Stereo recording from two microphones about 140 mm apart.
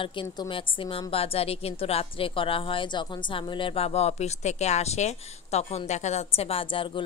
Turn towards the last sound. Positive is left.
turn(degrees=35)  # may be behind; listen again after turning